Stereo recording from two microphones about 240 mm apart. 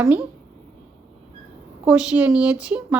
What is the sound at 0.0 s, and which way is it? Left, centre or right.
Speech, centre.